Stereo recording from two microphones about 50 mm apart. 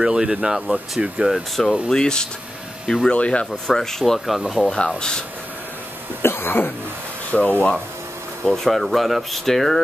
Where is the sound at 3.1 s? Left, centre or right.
Left.